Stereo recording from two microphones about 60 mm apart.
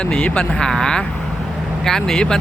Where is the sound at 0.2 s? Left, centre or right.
Left.